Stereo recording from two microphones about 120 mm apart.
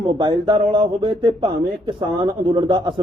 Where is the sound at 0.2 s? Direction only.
35° right (ahead or behind).